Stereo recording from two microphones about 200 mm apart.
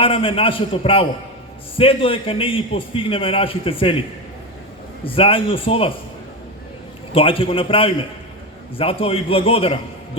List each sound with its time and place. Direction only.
0.0 s a man's voice: 25° left (ahead or behind)
5.0 s a man's voice: 25° left (ahead or behind)
7.1 s a man's voice: 25° left (ahead or behind)